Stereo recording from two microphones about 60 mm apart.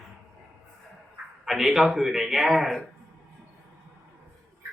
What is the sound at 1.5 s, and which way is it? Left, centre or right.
Speech, centre.